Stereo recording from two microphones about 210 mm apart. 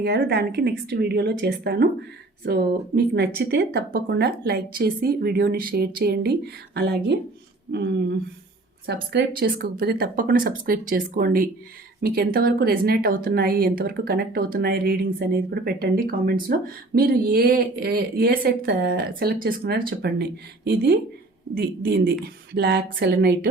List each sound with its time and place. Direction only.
0.0 s speech: 50° right (ahead or behind)